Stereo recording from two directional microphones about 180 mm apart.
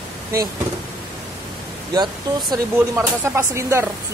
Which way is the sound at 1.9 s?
25° right (ahead or behind).